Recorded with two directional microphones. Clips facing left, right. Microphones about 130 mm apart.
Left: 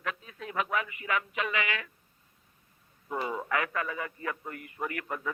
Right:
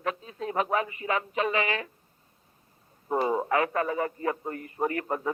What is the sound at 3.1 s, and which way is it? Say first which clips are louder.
A man's voice: right 6 dB; 35° right (ahead or behind).